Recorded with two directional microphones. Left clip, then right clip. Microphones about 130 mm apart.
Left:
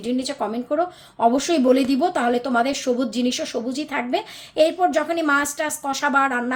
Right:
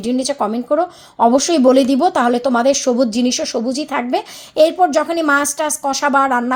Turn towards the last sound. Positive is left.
turn(degrees=-45)  # may be behind; listen again after turning